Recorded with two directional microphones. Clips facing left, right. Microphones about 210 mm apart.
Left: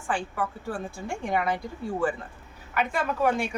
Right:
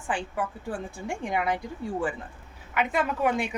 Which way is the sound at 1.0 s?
15° right (ahead or behind).